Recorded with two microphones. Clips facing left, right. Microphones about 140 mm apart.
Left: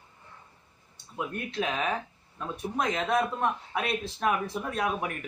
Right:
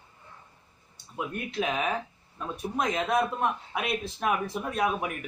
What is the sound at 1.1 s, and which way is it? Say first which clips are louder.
Speech: right 1 dB; 5° right (ahead or behind).